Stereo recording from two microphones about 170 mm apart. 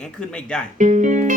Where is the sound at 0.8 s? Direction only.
45° right (ahead or behind).